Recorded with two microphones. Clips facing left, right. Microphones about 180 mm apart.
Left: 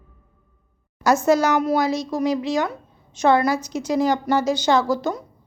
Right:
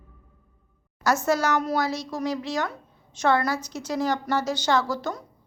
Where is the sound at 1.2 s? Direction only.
15° left (ahead or behind).